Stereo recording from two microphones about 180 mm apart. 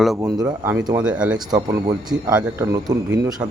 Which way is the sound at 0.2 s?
20° right (ahead or behind).